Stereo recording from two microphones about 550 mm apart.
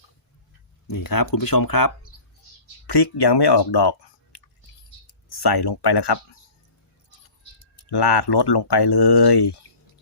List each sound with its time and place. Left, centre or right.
0.9 s speech: left
7.9 s speech: left